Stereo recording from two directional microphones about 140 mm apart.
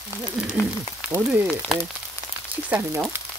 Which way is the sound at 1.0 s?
10° right (ahead or behind).